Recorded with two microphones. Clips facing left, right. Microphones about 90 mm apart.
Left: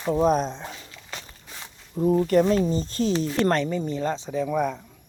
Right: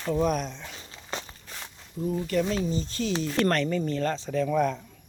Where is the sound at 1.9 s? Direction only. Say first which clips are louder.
Left 7 dB; 45° left (ahead or behind).